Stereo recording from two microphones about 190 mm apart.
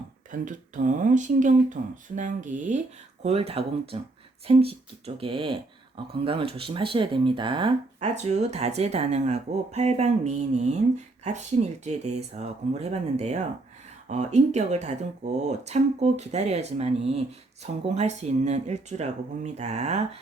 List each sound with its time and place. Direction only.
0.3 s speech: 40° right (ahead or behind)